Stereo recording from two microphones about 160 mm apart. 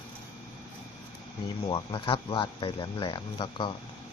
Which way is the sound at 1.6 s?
30° left (ahead or behind).